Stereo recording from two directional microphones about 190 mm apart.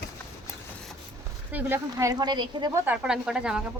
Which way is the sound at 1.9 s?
20° right (ahead or behind).